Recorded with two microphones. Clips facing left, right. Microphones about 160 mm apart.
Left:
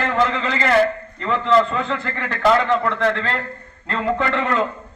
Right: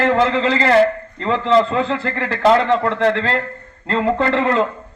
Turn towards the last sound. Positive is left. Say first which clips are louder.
# right 4 dB
turn(degrees=-30)  # may be behind; listen again after turning